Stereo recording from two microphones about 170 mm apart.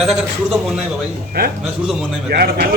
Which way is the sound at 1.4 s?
65° right (ahead or behind).